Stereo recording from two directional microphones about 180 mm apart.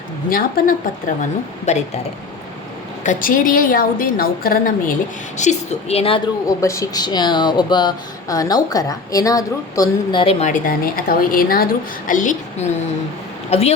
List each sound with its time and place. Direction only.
0.3 s a woman's voice: 50° left (ahead or behind)
3.0 s a woman's voice: 45° left (ahead or behind)
5.4 s a woman's voice: 35° left (ahead or behind)
6.6 s speech: 15° left (ahead or behind)
10.4 s a woman's voice: 50° left (ahead or behind)